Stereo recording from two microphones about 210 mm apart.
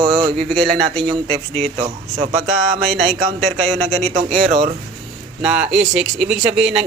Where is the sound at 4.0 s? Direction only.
30° right (ahead or behind).